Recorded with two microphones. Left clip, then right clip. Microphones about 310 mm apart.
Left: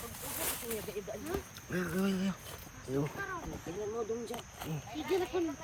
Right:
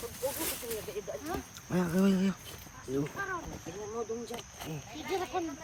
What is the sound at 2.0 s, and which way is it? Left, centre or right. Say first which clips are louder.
Speech: right 7 dB; centre.